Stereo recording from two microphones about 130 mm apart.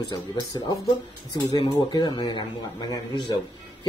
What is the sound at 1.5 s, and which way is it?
Speech, 35° left (ahead or behind).